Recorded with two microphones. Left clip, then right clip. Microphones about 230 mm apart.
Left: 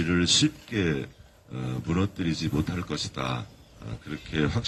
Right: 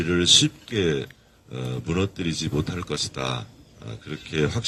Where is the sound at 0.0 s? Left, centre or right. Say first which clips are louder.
Right 5 dB; right.